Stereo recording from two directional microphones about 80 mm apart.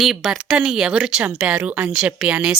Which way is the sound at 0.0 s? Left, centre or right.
Centre.